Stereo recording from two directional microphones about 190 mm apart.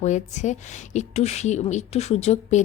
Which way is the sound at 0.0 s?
40° left (ahead or behind).